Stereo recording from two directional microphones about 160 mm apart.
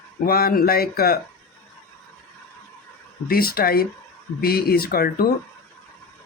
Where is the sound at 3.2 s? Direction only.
70° left (ahead or behind).